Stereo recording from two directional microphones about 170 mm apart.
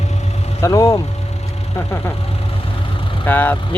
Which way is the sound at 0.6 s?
15° left (ahead or behind).